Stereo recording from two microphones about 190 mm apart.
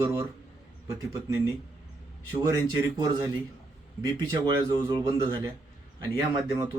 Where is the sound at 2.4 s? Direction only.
20° right (ahead or behind).